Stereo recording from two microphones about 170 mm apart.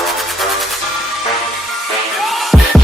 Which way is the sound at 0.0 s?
Centre (ahead or behind).